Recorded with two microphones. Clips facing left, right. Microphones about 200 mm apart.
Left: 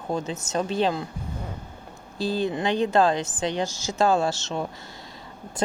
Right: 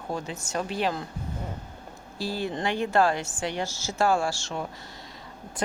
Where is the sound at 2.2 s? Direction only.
20° left (ahead or behind).